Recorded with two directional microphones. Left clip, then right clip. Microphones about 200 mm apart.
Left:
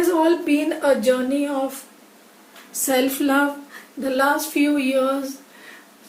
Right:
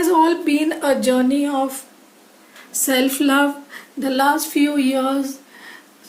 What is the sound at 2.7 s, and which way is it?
A woman's voice, 55° right (ahead or behind).